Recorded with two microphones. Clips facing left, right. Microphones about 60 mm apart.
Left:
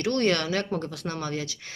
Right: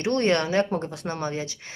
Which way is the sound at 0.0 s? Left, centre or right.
Right.